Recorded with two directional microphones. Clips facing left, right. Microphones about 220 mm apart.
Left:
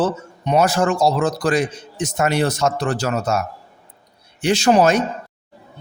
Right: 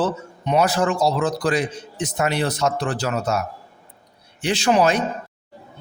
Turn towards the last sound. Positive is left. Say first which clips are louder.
# left 3 dB
turn(degrees=45)  # may be behind; listen again after turning